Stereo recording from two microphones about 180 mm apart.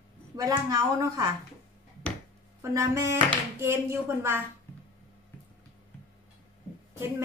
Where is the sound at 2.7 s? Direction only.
15° right (ahead or behind).